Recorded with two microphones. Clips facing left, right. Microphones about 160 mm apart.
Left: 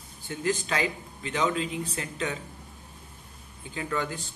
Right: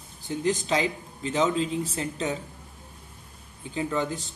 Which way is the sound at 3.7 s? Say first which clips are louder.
Right 3 dB; 20° right (ahead or behind).